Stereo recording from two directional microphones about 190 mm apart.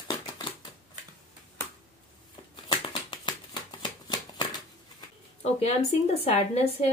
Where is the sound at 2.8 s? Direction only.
25° left (ahead or behind).